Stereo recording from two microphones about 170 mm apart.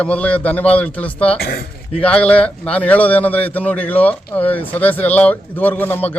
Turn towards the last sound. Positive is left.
turn(degrees=10)  # may be behind; listen again after turning